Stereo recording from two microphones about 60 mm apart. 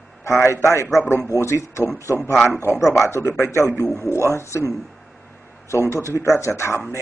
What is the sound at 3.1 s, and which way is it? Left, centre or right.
A man's voice, left.